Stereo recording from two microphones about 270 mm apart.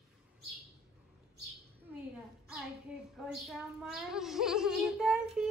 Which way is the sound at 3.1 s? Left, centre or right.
Centre.